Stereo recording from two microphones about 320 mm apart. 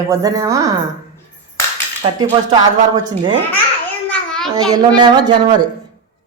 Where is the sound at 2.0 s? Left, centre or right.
Centre.